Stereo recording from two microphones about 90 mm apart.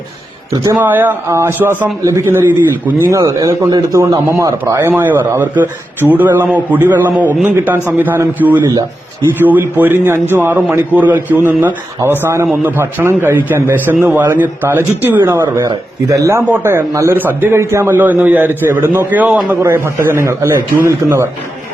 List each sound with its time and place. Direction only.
0.8 s a man's voice: 20° right (ahead or behind)
3.1 s a man's voice: 40° right (ahead or behind)
15.6 s a man's voice: 45° right (ahead or behind)
17.2 s a man's voice: 20° right (ahead or behind)